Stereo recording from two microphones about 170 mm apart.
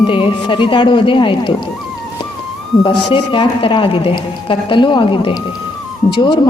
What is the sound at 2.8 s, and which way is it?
Speech, 30° left (ahead or behind).